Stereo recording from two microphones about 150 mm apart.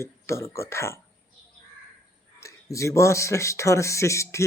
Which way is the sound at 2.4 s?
20° left (ahead or behind).